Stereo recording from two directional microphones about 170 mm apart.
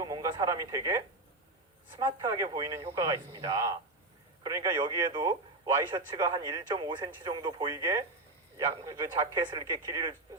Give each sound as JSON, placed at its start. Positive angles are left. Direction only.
{"t": 0.0, "sound": "radio", "side_deg": -20}
{"t": 2.0, "sound": "speech", "side_deg": -20}